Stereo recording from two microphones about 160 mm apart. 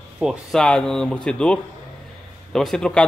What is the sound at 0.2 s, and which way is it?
A man's voice, centre (ahead or behind).